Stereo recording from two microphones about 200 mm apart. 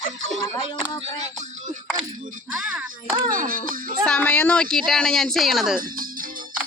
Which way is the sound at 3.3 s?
45° right (ahead or behind).